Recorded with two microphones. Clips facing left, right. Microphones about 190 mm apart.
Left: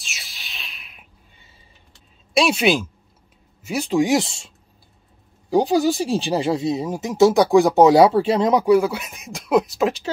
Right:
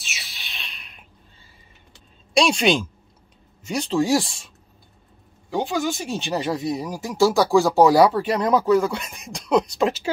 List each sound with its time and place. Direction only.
0.0 s a sound: centre (ahead or behind)
2.3 s speech: 5° left (ahead or behind); by 4.5 s 25° left (ahead or behind)
5.5 s speech: 35° left (ahead or behind); by 10.0 s centre (ahead or behind)